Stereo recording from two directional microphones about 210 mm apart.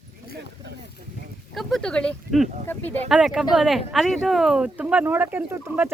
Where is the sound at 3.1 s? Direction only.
Centre (ahead or behind).